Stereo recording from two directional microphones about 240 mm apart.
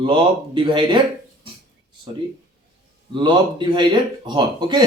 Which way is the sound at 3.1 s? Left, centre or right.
Centre.